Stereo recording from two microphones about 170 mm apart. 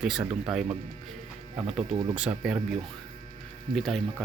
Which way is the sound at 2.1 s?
5° right (ahead or behind).